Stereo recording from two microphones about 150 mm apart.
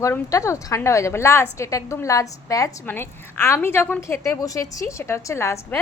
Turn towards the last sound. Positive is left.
turn(degrees=20)  # may be behind; listen again after turning